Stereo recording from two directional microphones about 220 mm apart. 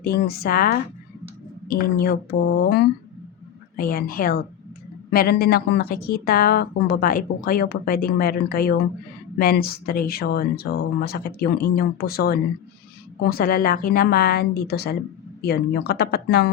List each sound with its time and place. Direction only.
0.0 s a woman's voice: 45° left (ahead or behind)